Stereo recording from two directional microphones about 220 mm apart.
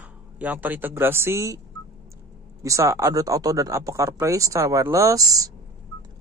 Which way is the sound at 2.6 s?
15° right (ahead or behind).